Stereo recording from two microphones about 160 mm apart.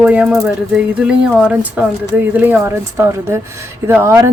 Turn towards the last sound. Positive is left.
turn(degrees=-15)  # may be behind; listen again after turning